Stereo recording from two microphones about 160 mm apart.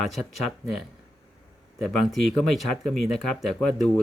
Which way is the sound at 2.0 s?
Centre (ahead or behind).